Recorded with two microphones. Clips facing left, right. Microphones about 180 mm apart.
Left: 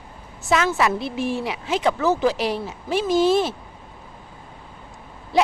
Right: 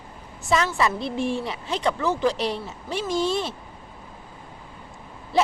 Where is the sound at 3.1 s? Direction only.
5° left (ahead or behind).